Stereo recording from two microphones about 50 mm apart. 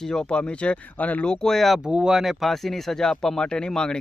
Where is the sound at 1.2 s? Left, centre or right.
Centre.